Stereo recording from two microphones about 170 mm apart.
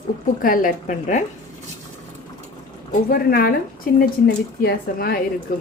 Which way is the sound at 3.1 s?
60° left (ahead or behind).